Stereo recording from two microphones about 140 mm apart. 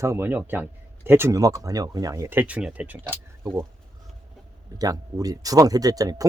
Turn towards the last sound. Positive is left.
turn(degrees=-25)  # may be behind; listen again after turning